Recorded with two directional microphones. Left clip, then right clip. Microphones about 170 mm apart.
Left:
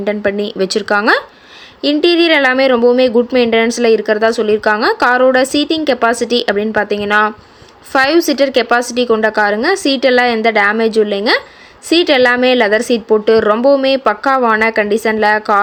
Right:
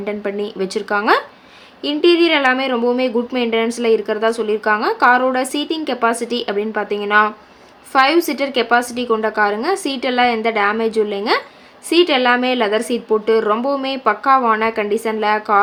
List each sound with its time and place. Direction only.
0.0 s speech: 30° left (ahead or behind)